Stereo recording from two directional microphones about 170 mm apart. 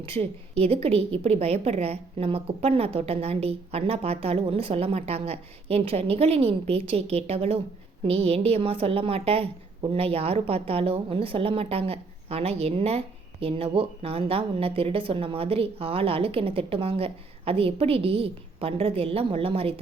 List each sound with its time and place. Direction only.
0.0 s a woman's voice: 35° right (ahead or behind)